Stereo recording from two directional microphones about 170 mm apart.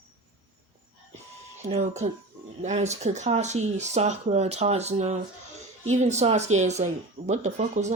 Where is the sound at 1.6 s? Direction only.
40° right (ahead or behind).